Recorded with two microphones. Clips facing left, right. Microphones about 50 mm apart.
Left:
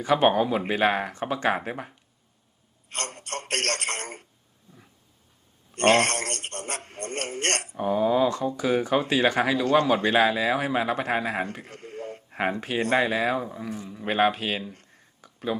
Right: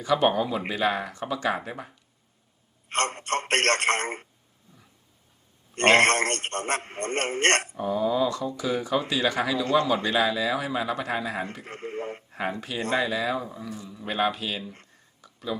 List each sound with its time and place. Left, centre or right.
0.0 s speech: left
2.9 s a man's voice: right
5.7 s speech: right
7.8 s speech: left
11.6 s speech: right
12.3 s speech: left
15.2 s a sound: left